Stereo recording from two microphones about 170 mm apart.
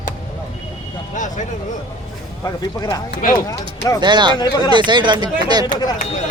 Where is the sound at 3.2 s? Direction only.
50° left (ahead or behind).